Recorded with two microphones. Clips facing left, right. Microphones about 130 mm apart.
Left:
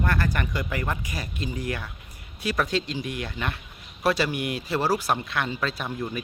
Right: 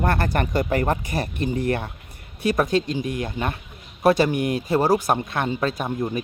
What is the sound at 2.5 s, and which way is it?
A man's voice, 45° right (ahead or behind).